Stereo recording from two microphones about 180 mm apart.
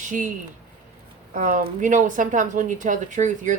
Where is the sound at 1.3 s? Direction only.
45° right (ahead or behind).